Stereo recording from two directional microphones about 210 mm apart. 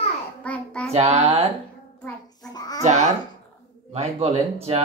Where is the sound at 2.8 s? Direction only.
35° right (ahead or behind).